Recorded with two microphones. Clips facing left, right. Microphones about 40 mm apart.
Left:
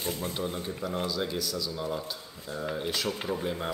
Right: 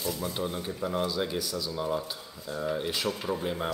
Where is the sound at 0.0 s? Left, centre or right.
Left.